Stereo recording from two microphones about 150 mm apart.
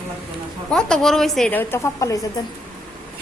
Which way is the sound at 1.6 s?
15° left (ahead or behind).